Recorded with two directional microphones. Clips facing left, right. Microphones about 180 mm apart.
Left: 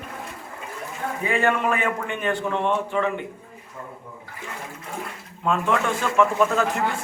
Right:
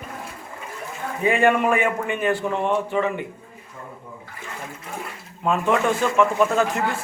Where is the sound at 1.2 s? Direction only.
15° right (ahead or behind).